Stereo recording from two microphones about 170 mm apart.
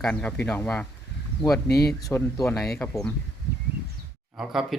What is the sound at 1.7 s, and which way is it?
Speech, 70° left (ahead or behind).